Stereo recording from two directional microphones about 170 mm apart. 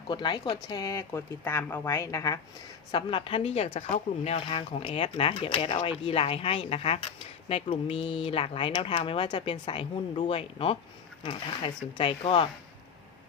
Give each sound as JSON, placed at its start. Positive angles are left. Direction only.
{"t": 0.1, "sound": "a woman's voice", "side_deg": 25}
{"t": 2.9, "sound": "a woman's voice", "side_deg": 30}